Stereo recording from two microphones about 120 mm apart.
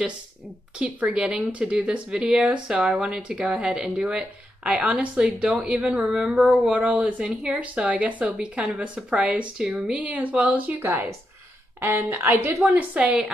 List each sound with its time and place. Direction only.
0.7 s speech: 10° right (ahead or behind)